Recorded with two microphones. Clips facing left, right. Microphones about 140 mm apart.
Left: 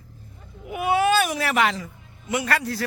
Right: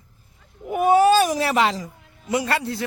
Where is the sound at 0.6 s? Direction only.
45° right (ahead or behind).